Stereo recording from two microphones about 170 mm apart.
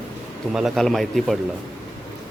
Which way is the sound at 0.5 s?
Centre (ahead or behind).